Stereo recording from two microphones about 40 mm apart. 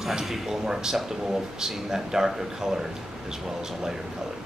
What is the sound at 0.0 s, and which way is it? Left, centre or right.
Speech, centre.